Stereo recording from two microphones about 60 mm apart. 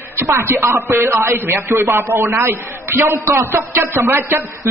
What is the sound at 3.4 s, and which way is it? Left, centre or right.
A man's voice, right.